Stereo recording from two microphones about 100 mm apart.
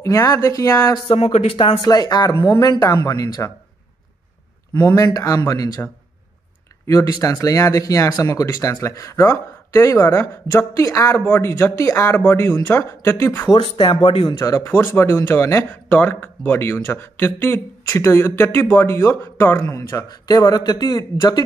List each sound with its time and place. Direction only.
0.0 s speech: 35° left (ahead or behind)
1.0 s speech: 75° left (ahead or behind)
1.9 s speech: 40° left (ahead or behind)
4.8 s speech: 30° left (ahead or behind)
6.9 s speech: 35° left (ahead or behind)
11.1 s speech: 20° left (ahead or behind)
14.0 s speech: 55° left (ahead or behind)
14.4 s speech: 30° left (ahead or behind)